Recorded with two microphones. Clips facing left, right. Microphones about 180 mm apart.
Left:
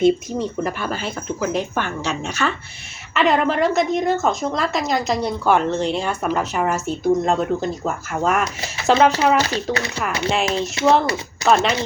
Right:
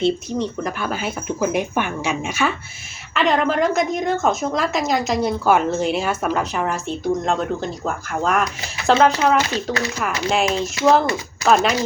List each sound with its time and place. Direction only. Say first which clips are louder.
0.0 s a woman's voice: left 3 dB; 5° left (ahead or behind)
1.4 s speech: right 2 dB; 15° right (ahead or behind)
3.2 s a woman's voice: left 1 dB; centre (ahead or behind)